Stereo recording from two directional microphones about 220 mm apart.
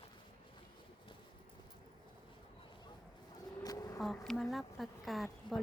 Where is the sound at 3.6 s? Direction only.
15° left (ahead or behind).